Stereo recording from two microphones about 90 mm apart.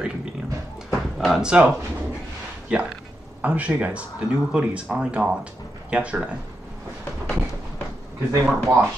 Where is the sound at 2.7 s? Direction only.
10° right (ahead or behind).